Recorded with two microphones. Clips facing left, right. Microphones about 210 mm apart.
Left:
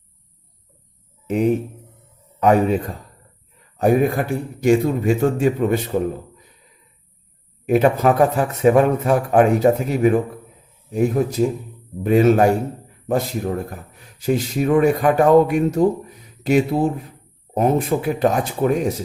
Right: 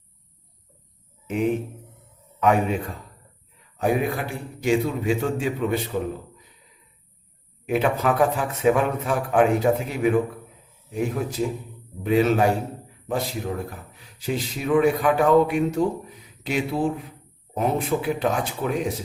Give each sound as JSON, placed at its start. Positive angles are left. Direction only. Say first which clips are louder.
{"t": 1.3, "sound": "a man's voice", "louder": "left 5 dB", "side_deg": 40}
{"t": 7.7, "sound": "a man's voice", "louder": "left 6 dB", "side_deg": 45}